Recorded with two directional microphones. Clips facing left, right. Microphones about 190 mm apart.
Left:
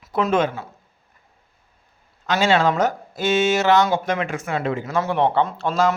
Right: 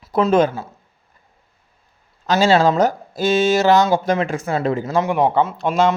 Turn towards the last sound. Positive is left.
turn(degrees=-15)  # may be behind; listen again after turning